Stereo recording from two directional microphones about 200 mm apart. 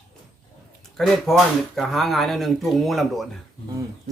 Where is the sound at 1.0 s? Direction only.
Centre (ahead or behind).